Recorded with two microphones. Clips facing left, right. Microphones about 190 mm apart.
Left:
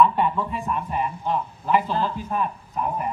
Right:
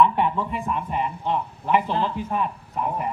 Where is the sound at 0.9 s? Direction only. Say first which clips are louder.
Even; 20° right (ahead or behind).